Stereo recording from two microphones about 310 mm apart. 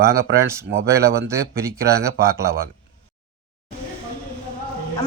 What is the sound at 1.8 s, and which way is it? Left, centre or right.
Speech, centre.